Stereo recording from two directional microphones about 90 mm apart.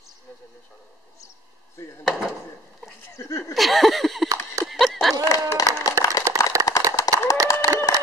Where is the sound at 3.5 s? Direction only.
Centre (ahead or behind).